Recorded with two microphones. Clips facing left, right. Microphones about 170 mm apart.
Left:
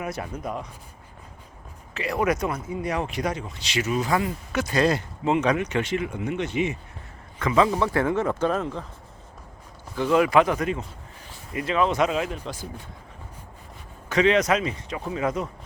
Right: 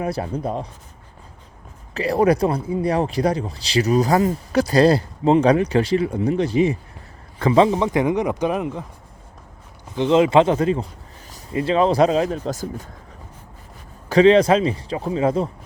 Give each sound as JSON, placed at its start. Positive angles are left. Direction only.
{"t": 0.0, "sound": "speech", "side_deg": -30}
{"t": 1.9, "sound": "a man's voice", "side_deg": -35}
{"t": 7.8, "sound": "speech", "side_deg": -15}
{"t": 9.9, "sound": "a man's voice", "side_deg": -25}
{"t": 14.1, "sound": "speech", "side_deg": -30}